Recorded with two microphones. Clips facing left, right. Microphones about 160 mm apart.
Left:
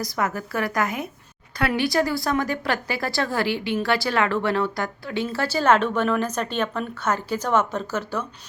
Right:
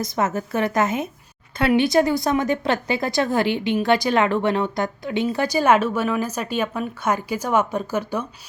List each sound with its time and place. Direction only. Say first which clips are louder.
0.0 s a woman's voice: right 3 dB; 25° right (ahead or behind)